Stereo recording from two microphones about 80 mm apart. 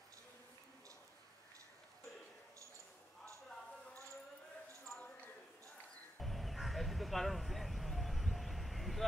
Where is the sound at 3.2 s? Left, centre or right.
Centre.